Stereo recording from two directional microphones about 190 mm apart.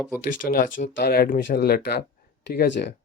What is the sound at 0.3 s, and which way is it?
Speech, 50° left (ahead or behind).